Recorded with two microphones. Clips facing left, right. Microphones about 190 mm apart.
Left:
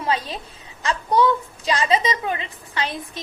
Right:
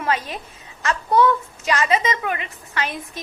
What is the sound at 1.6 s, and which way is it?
A woman's voice, 30° left (ahead or behind).